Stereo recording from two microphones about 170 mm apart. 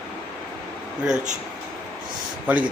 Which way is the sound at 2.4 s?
10° right (ahead or behind).